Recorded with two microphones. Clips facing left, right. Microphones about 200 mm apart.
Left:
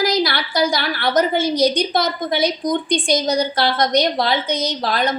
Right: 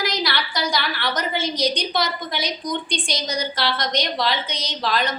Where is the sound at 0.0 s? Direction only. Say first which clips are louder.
Left 6 dB; 50° left (ahead or behind).